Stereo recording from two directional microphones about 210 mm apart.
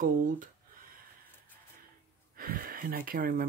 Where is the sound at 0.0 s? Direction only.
40° right (ahead or behind).